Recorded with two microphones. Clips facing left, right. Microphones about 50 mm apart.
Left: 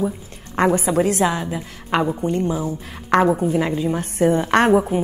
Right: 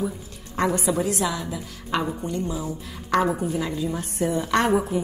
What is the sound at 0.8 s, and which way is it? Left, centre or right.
A woman's voice, left.